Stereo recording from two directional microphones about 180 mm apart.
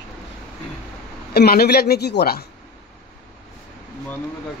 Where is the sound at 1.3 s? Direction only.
60° left (ahead or behind).